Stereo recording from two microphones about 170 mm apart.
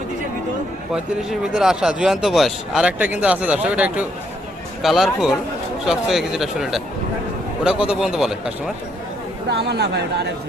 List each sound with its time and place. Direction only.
1.3 s speech: 5° right (ahead or behind)
9.5 s speech: 75° right (ahead or behind)